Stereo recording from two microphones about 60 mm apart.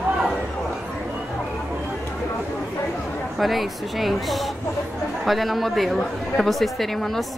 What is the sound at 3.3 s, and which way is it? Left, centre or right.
A woman's voice, centre.